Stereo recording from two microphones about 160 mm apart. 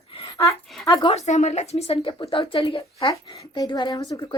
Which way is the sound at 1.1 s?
45° left (ahead or behind).